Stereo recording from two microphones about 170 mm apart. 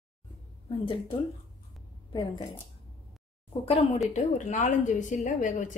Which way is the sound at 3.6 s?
35° left (ahead or behind).